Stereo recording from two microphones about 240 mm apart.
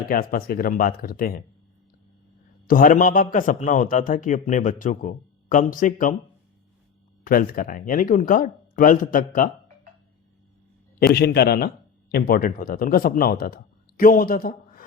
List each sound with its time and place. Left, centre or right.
0.1 s a man's voice: left
2.6 s a man's voice: left
7.3 s a man's voice: left
11.0 s a man's voice: left